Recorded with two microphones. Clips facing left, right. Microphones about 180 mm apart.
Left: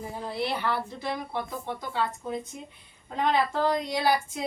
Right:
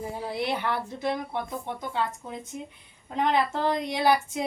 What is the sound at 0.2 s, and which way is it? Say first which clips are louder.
Speech: even; 15° right (ahead or behind).